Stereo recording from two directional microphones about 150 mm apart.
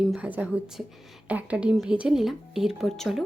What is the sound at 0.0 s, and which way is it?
A woman's voice, 5° right (ahead or behind).